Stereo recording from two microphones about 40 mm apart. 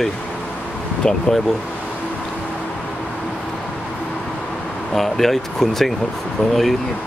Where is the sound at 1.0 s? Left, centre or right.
Left.